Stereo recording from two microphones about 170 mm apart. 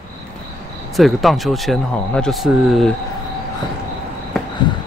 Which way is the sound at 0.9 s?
Centre (ahead or behind).